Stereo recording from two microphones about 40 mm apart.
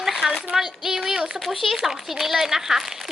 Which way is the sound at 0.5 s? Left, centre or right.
Centre.